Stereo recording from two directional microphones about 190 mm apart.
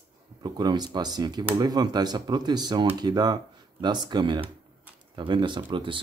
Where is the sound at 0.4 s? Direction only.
20° right (ahead or behind).